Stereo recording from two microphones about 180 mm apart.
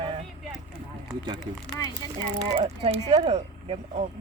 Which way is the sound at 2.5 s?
35° right (ahead or behind).